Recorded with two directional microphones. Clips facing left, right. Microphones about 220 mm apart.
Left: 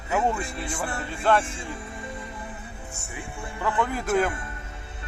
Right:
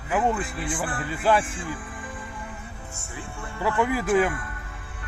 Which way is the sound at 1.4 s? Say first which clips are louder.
Right 2 dB; 25° left (ahead or behind).